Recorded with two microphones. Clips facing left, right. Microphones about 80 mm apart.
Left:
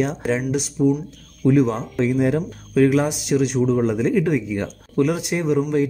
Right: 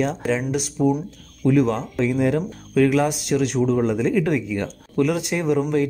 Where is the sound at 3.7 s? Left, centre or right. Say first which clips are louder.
Left 1 dB; centre.